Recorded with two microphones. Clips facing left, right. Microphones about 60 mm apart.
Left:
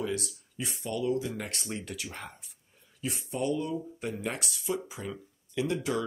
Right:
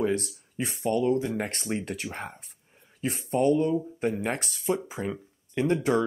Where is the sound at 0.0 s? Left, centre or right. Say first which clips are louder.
Right 6 dB; right.